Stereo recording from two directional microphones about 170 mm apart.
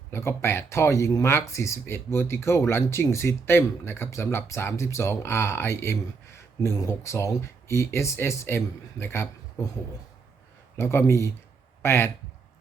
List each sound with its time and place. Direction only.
0.1 s speech: 15° left (ahead or behind)
10.8 s speech: 15° left (ahead or behind)